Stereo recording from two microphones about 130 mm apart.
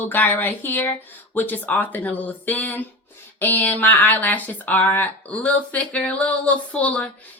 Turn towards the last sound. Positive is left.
turn(degrees=10)  # may be behind; listen again after turning